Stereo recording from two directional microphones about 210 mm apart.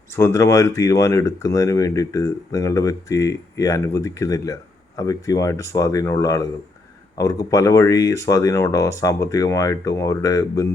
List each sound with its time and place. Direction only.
0.1 s speech: 10° left (ahead or behind)